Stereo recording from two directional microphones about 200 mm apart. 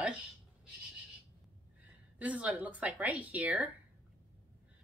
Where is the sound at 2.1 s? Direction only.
5° right (ahead or behind).